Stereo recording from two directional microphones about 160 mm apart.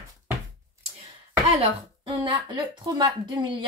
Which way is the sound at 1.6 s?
30° right (ahead or behind).